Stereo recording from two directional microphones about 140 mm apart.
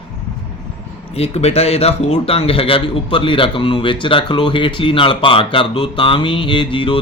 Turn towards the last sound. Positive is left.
turn(degrees=35)  # may be behind; listen again after turning